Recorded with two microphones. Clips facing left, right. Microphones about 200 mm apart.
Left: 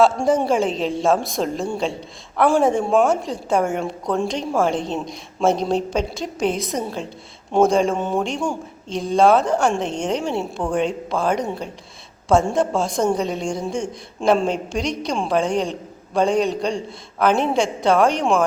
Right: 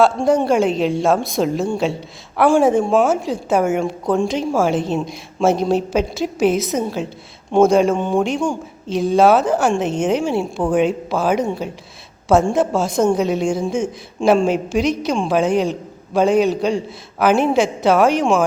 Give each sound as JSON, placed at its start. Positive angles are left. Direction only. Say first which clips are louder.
{"t": 0.2, "sound": "a woman's voice", "louder": "right 3 dB", "side_deg": 0}